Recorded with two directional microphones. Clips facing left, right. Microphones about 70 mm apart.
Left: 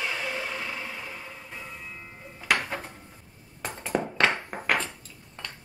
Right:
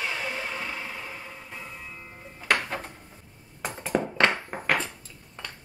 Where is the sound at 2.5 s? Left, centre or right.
Centre.